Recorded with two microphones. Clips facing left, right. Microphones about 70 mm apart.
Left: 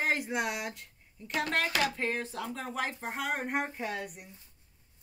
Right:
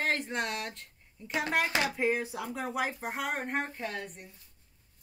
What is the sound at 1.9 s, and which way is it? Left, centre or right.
A woman's voice, centre.